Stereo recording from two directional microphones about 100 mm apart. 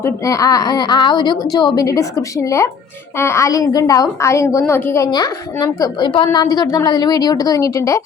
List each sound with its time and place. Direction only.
0.0 s a woman's voice: 35° left (ahead or behind)
5.1 s a woman's voice: 40° left (ahead or behind)
6.0 s a woman's voice: 55° left (ahead or behind)
6.4 s a woman's voice: 40° left (ahead or behind)